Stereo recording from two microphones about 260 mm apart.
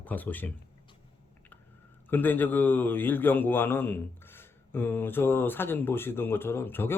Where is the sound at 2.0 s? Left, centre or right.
Centre.